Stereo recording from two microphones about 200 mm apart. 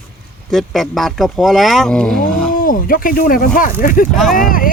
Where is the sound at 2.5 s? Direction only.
45° left (ahead or behind).